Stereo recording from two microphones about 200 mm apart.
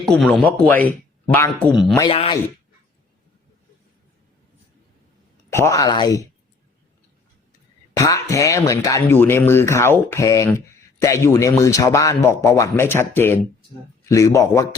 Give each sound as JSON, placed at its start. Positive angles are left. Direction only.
{"t": 0.0, "sound": "speech", "side_deg": 5}
{"t": 2.0, "sound": "speech", "side_deg": 25}
{"t": 5.5, "sound": "speech", "side_deg": 15}
{"t": 7.9, "sound": "speech", "side_deg": 15}